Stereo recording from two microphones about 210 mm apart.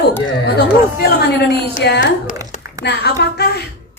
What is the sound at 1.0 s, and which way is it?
A woman's voice, 50° left (ahead or behind).